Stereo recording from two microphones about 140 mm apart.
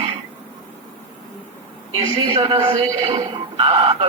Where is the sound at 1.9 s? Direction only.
45° right (ahead or behind).